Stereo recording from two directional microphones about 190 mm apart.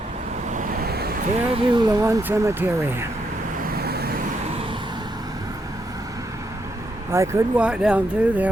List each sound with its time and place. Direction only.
0.5 s vehicle: 55° right (ahead or behind)
1.5 s speech: 25° right (ahead or behind)
3.6 s vehicle: 55° right (ahead or behind)
7.1 s speech: 15° right (ahead or behind)